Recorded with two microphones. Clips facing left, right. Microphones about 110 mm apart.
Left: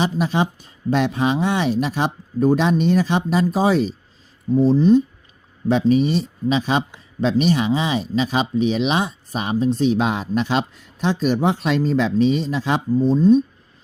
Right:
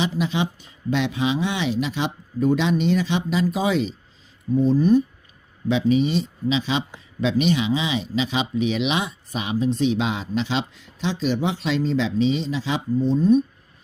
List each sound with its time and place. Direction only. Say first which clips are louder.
0.2 s speech: left 3 dB; 45° left (ahead or behind); by 5.0 s 25° left (ahead or behind)
5.9 s speech: left 2 dB; 40° left (ahead or behind)
12.9 s speech: left 3 dB; 35° left (ahead or behind)